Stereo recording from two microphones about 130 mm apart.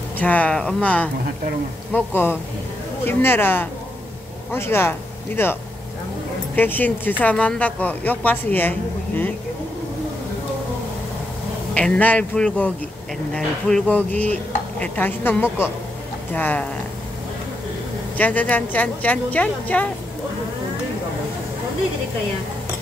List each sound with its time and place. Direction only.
0.2 s speech: 10° left (ahead or behind)
11.7 s speech: 10° left (ahead or behind)
18.1 s speech: 10° left (ahead or behind)